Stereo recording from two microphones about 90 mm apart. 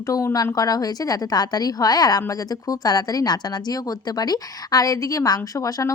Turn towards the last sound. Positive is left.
turn(degrees=40)  # may be behind; listen again after turning